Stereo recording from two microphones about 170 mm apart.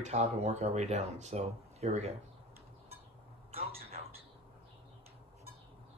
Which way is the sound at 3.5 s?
35° right (ahead or behind).